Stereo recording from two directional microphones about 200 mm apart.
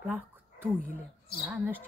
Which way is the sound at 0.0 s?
10° right (ahead or behind).